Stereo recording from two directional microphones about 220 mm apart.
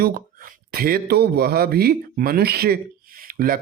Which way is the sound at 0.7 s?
45° right (ahead or behind).